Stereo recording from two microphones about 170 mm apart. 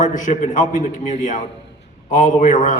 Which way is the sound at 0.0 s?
50° left (ahead or behind).